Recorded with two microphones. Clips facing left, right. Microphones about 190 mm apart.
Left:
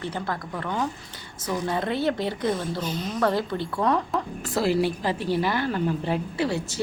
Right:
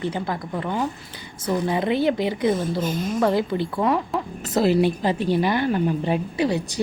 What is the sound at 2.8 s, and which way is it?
Speech, 50° right (ahead or behind).